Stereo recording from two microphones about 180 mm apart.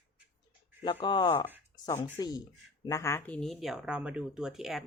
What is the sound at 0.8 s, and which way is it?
Speech, 25° left (ahead or behind).